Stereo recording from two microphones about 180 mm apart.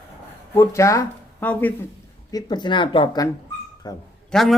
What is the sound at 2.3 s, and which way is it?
Speech, 20° left (ahead or behind).